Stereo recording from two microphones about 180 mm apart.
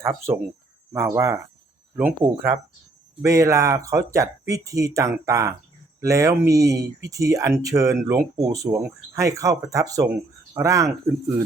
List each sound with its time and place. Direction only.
0.0 s speech: 15° right (ahead or behind)